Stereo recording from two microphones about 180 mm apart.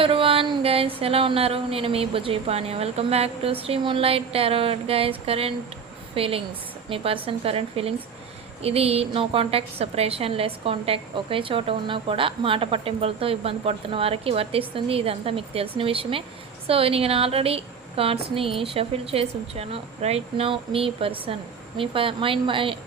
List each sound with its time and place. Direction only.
0.0 s a woman's voice: 30° right (ahead or behind)